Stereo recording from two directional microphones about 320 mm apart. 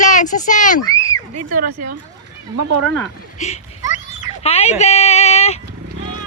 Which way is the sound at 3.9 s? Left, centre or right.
Centre.